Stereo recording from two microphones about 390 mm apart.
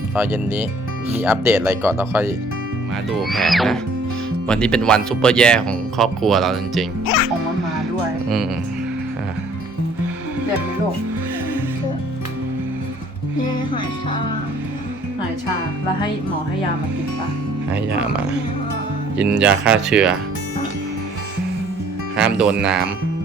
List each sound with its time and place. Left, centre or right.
0.2 s speech: centre
19.1 s speech: centre
22.1 s music: centre
22.6 s speech: centre